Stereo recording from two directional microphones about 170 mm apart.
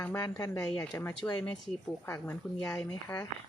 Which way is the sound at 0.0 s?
20° left (ahead or behind).